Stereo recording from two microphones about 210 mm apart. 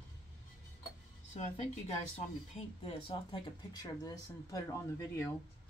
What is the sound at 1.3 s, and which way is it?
A woman's voice, 35° left (ahead or behind).